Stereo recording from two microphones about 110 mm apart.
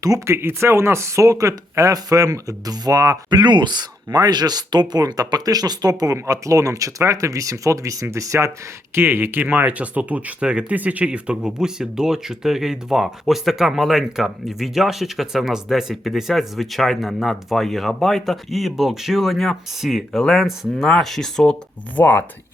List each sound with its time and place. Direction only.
0.0 s speech: 25° right (ahead or behind); by 21.5 s 5° left (ahead or behind)
21.9 s speech: 15° left (ahead or behind)